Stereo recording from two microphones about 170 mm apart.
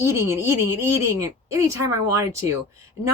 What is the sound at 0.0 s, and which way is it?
Speech, 15° right (ahead or behind).